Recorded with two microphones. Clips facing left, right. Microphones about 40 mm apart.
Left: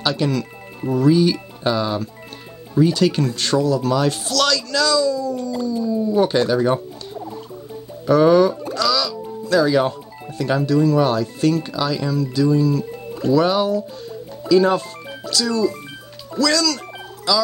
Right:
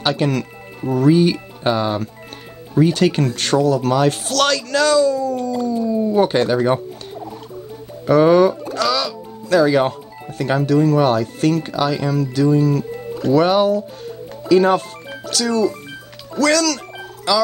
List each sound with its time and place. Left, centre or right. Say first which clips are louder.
0.0 s speech: right 2 dB; right
0.3 s speech: right 1 dB; right
8.1 s music: right 1 dB; right
10.3 s speech: right 2 dB; right
13.4 s speech: right 5 dB; right
17.3 s speech: right 2 dB; right